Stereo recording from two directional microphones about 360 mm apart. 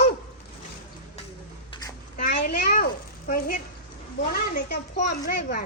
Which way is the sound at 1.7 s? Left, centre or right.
Left.